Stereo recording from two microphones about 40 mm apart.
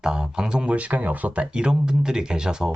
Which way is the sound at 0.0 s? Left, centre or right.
Centre.